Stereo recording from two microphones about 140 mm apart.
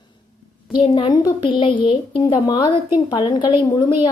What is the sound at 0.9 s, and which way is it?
A woman's voice, 35° left (ahead or behind).